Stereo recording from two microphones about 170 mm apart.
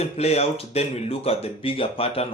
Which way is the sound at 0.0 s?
35° left (ahead or behind).